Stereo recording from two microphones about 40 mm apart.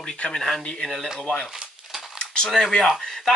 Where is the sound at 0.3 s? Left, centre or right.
Centre.